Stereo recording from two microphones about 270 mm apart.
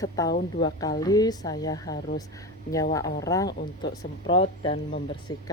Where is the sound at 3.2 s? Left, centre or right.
Centre.